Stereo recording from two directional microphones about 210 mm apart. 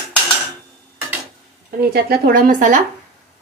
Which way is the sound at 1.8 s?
50° right (ahead or behind).